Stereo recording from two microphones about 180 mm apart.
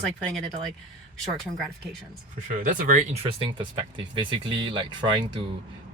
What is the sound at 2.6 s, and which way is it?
Speech, 45° right (ahead or behind).